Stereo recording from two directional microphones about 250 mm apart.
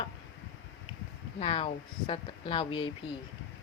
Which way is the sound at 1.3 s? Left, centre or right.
Left.